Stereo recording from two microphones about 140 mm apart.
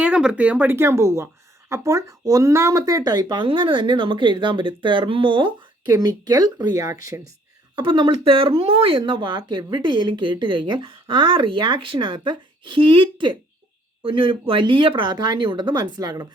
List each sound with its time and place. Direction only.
0.0 s speech: 5° right (ahead or behind); by 5.5 s 40° right (ahead or behind)
5.9 s speech: 25° right (ahead or behind)
7.8 s speech: 35° right (ahead or behind)